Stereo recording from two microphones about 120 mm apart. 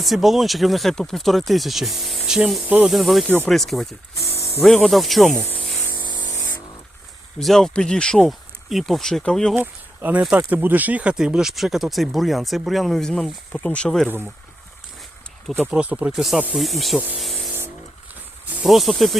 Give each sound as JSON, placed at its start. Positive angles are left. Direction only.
{"t": 0.0, "sound": "speech", "side_deg": 0}
{"t": 2.8, "sound": "speech", "side_deg": 0}
{"t": 3.2, "sound": "speech", "side_deg": 15}
{"t": 3.5, "sound": "speech", "side_deg": 0}
{"t": 4.2, "sound": "spray", "side_deg": 25}
{"t": 4.6, "sound": "speech", "side_deg": 5}
{"t": 5.4, "sound": "a sound", "side_deg": 15}
{"t": 7.3, "sound": "speech", "side_deg": 5}
{"t": 9.6, "sound": "speech", "side_deg": -15}
{"t": 15.6, "sound": "speech", "side_deg": -15}
{"t": 17.2, "sound": "spray", "side_deg": 0}
{"t": 18.5, "sound": "speech", "side_deg": 0}